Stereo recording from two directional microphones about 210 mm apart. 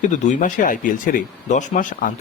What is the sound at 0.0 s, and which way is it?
A man's voice, 35° left (ahead or behind).